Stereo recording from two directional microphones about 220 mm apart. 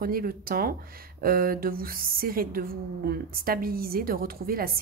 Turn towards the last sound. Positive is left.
turn(degrees=-40)  # may be behind; listen again after turning